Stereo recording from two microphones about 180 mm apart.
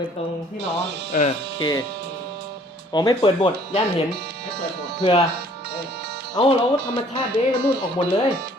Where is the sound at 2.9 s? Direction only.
20° left (ahead or behind).